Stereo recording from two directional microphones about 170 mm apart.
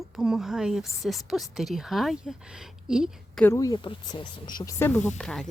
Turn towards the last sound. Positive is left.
turn(degrees=5)  # may be behind; listen again after turning